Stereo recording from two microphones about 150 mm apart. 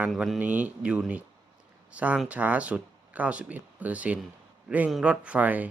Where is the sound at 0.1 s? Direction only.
Centre (ahead or behind).